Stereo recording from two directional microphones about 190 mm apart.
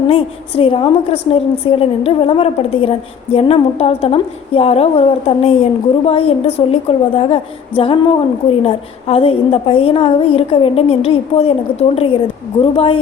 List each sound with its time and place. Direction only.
0.1 s a woman's voice: 30° left (ahead or behind)